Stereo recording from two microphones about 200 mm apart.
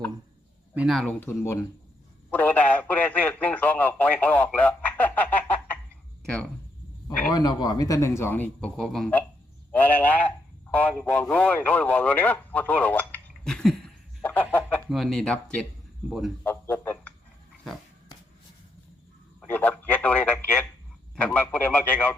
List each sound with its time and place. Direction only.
0.7 s speech: 5° right (ahead or behind)
7.2 s a man's voice: 20° left (ahead or behind)
19.4 s speech: 10° left (ahead or behind)